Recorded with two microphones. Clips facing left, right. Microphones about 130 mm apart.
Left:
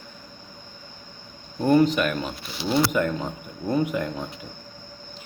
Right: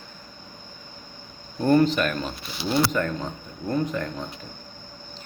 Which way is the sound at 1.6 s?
5° left (ahead or behind).